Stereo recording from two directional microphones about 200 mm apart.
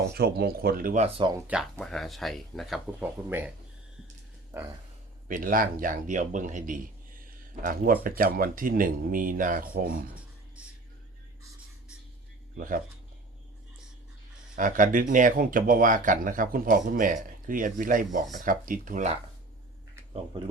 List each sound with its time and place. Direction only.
0.1 s speech: 50° right (ahead or behind)
1.0 s speech: 25° right (ahead or behind)
1.7 s speech: centre (ahead or behind)
4.5 s a sound: 15° right (ahead or behind)
5.3 s speech: 45° right (ahead or behind)
10.2 s beatboxing: 5° right (ahead or behind)
12.5 s speech: 45° right (ahead or behind)
14.5 s speech: 45° right (ahead or behind)
20.3 s speech: 25° right (ahead or behind)